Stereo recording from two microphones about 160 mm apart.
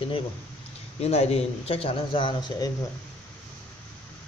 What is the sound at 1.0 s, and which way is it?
Speech, 40° left (ahead or behind).